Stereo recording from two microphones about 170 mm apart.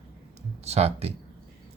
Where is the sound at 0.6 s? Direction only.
40° right (ahead or behind).